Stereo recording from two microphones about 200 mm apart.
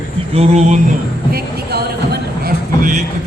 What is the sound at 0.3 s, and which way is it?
Speech, 35° right (ahead or behind).